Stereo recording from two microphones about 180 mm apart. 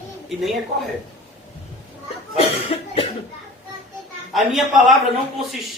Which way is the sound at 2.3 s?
30° left (ahead or behind).